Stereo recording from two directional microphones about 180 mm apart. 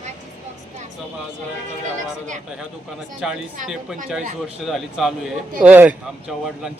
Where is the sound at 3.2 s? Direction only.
5° right (ahead or behind).